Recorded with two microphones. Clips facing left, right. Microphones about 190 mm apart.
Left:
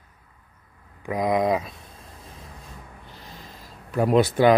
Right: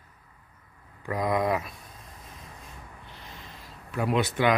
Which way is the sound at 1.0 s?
15° left (ahead or behind).